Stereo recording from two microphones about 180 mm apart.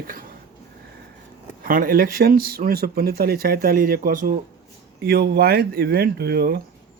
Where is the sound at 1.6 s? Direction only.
50° right (ahead or behind).